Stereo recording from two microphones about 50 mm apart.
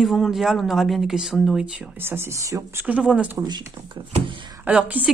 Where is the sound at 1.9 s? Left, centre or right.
Right.